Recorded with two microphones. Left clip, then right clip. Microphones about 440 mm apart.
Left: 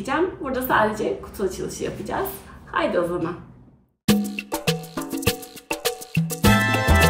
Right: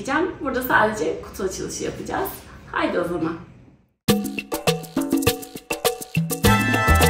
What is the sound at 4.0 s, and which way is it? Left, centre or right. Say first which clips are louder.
Music: right 1 dB; right.